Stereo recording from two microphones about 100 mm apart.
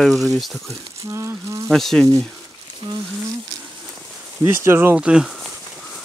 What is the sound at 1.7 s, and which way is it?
Speech, 5° left (ahead or behind).